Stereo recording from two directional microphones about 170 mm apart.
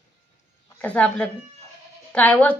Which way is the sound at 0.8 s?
5° left (ahead or behind).